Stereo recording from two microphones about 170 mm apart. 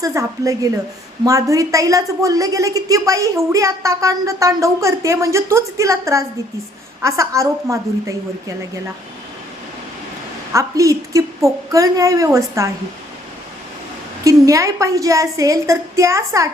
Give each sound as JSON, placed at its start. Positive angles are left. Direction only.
{"t": 0.0, "sound": "a woman's voice", "side_deg": -20}
{"t": 10.5, "sound": "a woman's voice", "side_deg": -20}
{"t": 14.3, "sound": "a woman's voice", "side_deg": -20}